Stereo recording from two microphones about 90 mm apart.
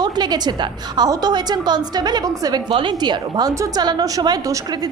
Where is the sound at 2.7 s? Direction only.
60° right (ahead or behind); by 4.9 s 40° right (ahead or behind).